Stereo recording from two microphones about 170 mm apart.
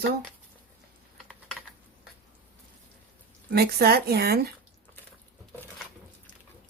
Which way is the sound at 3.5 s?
65° right (ahead or behind).